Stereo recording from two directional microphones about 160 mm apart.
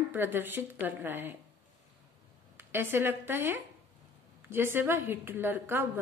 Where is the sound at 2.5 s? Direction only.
15° right (ahead or behind).